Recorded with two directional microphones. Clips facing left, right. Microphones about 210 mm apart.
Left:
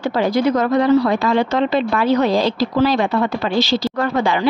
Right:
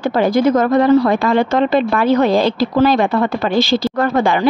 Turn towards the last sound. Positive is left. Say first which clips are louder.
# right 3 dB
turn(degrees=-50)  # may be behind; listen again after turning